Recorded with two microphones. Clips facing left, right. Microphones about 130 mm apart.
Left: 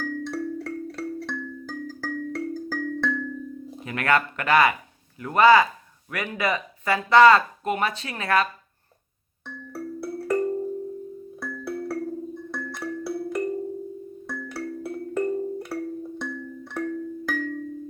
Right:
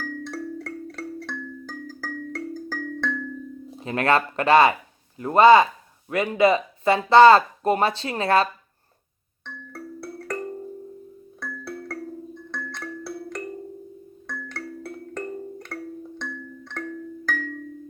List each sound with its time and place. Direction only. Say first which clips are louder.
0.0 s music: left 3 dB; centre (ahead or behind)
3.8 s speech: right 2 dB; 30° right (ahead or behind)
9.7 s music: left 5 dB; 5° left (ahead or behind)